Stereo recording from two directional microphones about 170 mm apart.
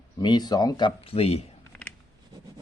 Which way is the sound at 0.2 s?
25° left (ahead or behind).